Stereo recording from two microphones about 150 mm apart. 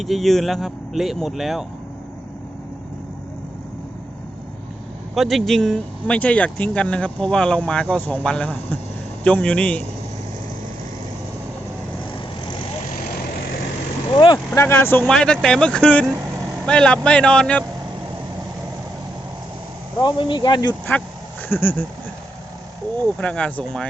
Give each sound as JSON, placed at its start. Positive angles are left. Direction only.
{"t": 0.0, "sound": "speech", "side_deg": 0}
{"t": 5.1, "sound": "speech", "side_deg": 0}
{"t": 14.1, "sound": "speech", "side_deg": 35}
{"t": 14.5, "sound": "speech", "side_deg": 15}
{"t": 15.0, "sound": "speech", "side_deg": 5}
{"t": 20.0, "sound": "speech", "side_deg": 30}
{"t": 21.5, "sound": "speech", "side_deg": 15}
{"t": 23.1, "sound": "speech", "side_deg": 5}